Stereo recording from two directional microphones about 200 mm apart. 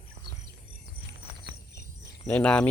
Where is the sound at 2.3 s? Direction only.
5° left (ahead or behind).